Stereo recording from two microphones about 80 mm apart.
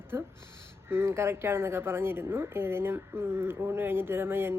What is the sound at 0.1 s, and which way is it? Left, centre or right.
A woman's voice, right.